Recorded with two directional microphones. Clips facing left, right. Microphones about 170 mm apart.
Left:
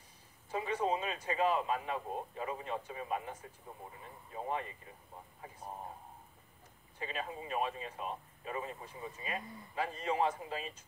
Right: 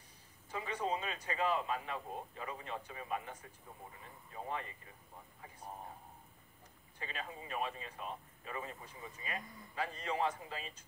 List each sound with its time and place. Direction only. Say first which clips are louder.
0.5 s speech: left 4 dB; 25° left (ahead or behind)
7.0 s speech: left 5 dB; 20° left (ahead or behind)